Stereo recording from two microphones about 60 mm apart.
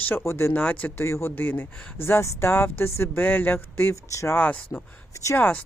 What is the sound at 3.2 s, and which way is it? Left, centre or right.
Speech, left.